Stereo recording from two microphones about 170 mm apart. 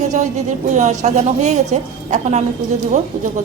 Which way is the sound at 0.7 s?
45° right (ahead or behind).